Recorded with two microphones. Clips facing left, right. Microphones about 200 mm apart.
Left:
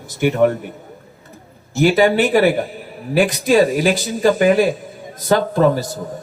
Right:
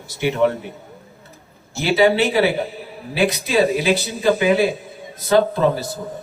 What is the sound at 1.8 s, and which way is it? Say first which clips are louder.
Speech: left 2 dB; 50° left (ahead or behind).